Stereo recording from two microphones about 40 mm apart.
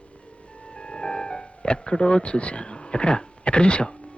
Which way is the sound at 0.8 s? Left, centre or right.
Left.